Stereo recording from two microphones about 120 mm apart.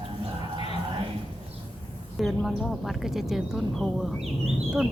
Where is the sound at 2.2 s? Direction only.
Centre (ahead or behind).